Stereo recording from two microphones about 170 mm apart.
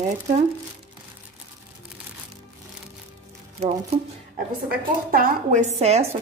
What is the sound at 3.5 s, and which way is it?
Speech, 35° right (ahead or behind).